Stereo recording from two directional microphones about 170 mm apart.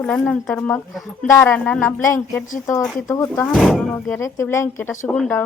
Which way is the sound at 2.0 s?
20° left (ahead or behind).